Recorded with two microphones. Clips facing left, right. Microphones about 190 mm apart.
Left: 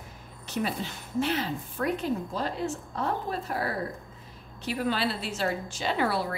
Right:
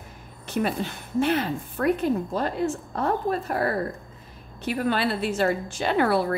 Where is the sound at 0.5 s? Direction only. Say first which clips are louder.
Right 5 dB; 55° right (ahead or behind).